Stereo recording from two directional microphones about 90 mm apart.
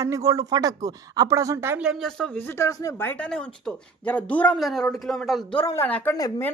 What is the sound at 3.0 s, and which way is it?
Speech, 25° left (ahead or behind).